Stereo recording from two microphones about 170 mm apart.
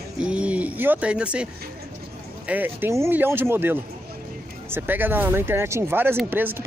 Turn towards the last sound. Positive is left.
turn(degrees=-10)  # may be behind; listen again after turning